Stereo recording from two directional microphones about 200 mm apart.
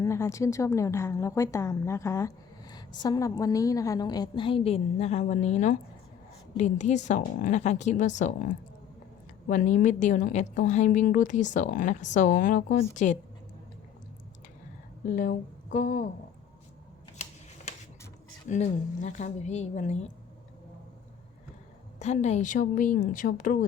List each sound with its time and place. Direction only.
0.0 s a woman's voice: 15° left (ahead or behind); by 8.3 s 40° left (ahead or behind)
9.5 s a woman's voice: 40° left (ahead or behind)
15.1 s a woman's voice: 45° left (ahead or behind)
18.4 s a woman's voice: 35° left (ahead or behind)
21.9 s a woman's voice: 35° left (ahead or behind)